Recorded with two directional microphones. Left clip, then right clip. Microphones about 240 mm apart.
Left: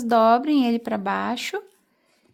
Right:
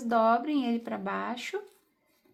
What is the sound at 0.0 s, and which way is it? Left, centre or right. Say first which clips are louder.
Speech: left 8 dB; left.